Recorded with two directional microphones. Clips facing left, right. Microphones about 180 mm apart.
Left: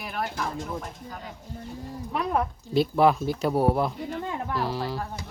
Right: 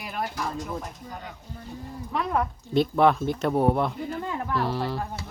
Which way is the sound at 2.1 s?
20° left (ahead or behind).